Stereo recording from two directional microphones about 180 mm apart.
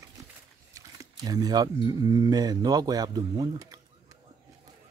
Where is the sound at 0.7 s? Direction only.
20° right (ahead or behind).